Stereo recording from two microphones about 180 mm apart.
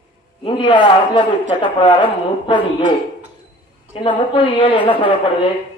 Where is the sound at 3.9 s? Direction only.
25° left (ahead or behind).